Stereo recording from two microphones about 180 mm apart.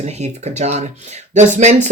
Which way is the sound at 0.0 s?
40° right (ahead or behind).